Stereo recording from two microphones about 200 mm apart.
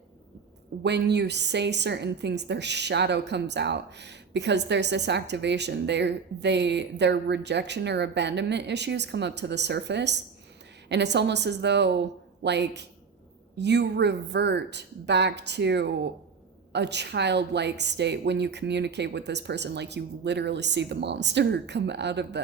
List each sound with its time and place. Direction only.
0.8 s a woman's voice: 60° right (ahead or behind)